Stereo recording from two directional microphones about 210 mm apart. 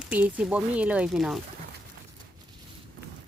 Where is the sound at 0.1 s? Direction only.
5° right (ahead or behind).